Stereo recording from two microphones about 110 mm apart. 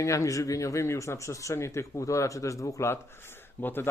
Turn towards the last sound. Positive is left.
turn(degrees=20)  # may be behind; listen again after turning